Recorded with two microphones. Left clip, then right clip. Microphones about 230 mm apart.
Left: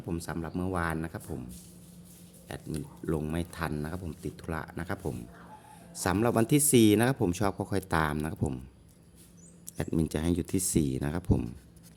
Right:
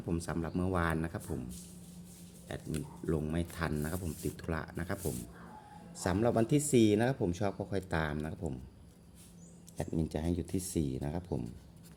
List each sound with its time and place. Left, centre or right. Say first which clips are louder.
0.1 s speech: left 1 dB; centre
2.5 s speech: left 2 dB; centre; by 8.5 s left
9.7 s speech: left 5 dB; left